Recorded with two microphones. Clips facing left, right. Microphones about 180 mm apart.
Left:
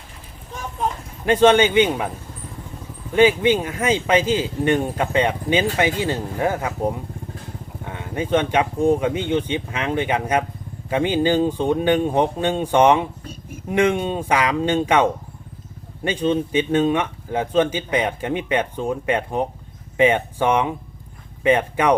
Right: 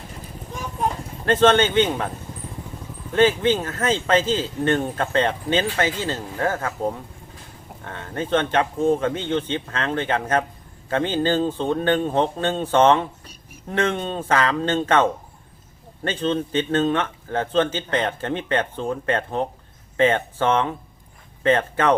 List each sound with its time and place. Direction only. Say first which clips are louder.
1.2 s a man's voice: left 2 dB; 10° left (ahead or behind)
3.1 s a man's voice: left 2 dB; 10° left (ahead or behind)